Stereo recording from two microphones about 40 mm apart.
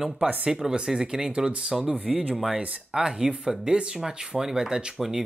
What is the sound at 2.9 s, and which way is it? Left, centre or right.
Speech, centre.